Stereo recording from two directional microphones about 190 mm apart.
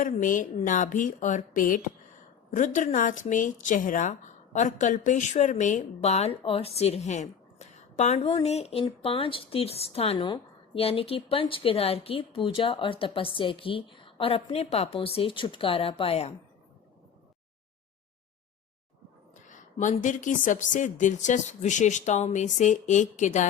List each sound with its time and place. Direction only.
0.0 s speech: 45° left (ahead or behind)
19.5 s speech: 40° left (ahead or behind)